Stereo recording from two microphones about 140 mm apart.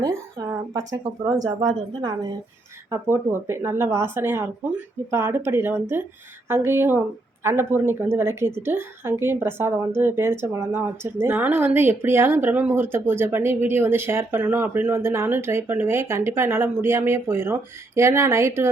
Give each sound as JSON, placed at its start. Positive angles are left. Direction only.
{"t": 0.4, "sound": "a sound", "side_deg": -20}
{"t": 0.7, "sound": "speech", "side_deg": -25}
{"t": 2.9, "sound": "a woman's voice", "side_deg": -20}